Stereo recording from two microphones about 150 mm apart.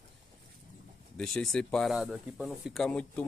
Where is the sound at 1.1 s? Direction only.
5° left (ahead or behind).